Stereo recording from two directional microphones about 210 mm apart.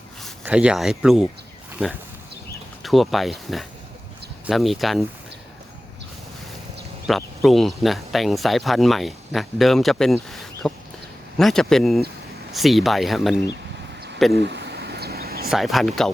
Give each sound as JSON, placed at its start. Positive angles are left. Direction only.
{"t": 0.2, "sound": "speech", "side_deg": 0}
{"t": 2.8, "sound": "speech", "side_deg": 0}
{"t": 7.1, "sound": "speech", "side_deg": 0}
{"t": 14.3, "sound": "a sound", "side_deg": -50}
{"t": 15.4, "sound": "speech", "side_deg": 0}